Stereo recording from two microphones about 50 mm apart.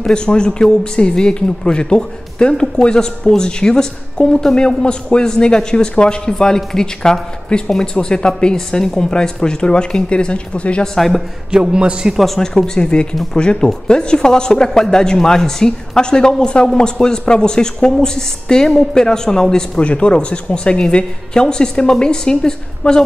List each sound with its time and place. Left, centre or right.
0.0 s speech: centre
11.0 s a man's voice: centre
11.5 s a man's voice: centre
12.4 s speech: centre
19.8 s speech: left